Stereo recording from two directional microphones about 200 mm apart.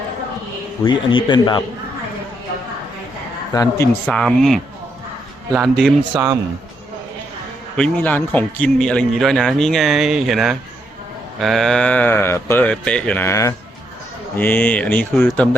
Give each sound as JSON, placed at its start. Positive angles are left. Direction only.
{"t": 0.9, "sound": "a man's voice", "side_deg": 25}
{"t": 3.5, "sound": "speech", "side_deg": 20}
{"t": 4.0, "sound": "a man's voice", "side_deg": 0}
{"t": 7.8, "sound": "a man's voice", "side_deg": 10}